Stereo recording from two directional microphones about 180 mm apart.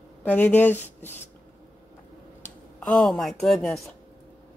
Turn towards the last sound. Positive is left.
turn(degrees=0)  # may be behind; listen again after turning